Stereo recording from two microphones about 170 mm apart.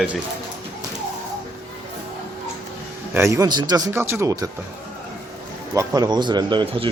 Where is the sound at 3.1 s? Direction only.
15° right (ahead or behind).